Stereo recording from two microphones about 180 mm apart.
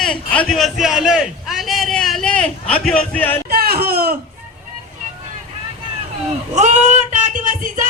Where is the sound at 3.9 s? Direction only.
55° right (ahead or behind).